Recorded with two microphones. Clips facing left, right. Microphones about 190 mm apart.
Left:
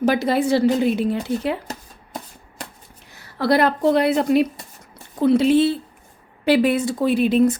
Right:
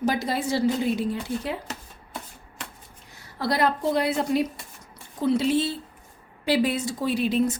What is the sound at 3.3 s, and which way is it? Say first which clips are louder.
A woman's voice: left 6 dB; 70° left (ahead or behind).